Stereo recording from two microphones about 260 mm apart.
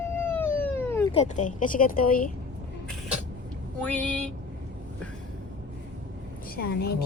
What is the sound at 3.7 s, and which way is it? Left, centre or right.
Speech, centre.